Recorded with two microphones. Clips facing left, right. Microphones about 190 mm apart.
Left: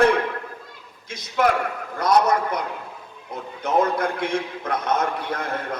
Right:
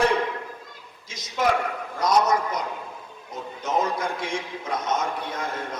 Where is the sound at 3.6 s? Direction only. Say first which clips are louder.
Left 4 dB; 60° left (ahead or behind).